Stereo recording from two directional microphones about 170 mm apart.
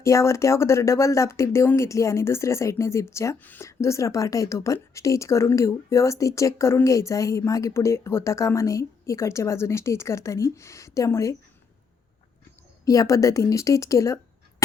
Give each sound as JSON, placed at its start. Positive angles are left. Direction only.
{"t": 0.0, "sound": "speech", "side_deg": 15}
{"t": 12.8, "sound": "a woman's voice", "side_deg": 20}